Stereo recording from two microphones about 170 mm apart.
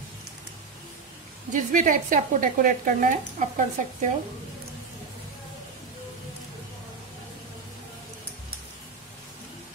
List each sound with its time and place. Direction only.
1.5 s speech: 50° right (ahead or behind)